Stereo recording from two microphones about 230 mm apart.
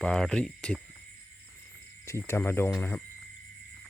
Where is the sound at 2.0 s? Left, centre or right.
Centre.